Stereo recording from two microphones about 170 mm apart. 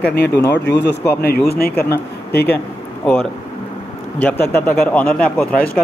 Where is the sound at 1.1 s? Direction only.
65° left (ahead or behind).